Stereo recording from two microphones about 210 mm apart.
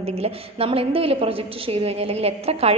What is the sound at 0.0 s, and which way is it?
A woman's voice, 30° right (ahead or behind).